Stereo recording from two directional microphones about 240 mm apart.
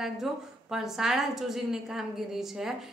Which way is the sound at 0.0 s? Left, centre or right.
Centre.